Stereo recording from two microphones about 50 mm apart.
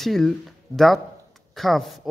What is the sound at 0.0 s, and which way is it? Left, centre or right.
Speech, centre.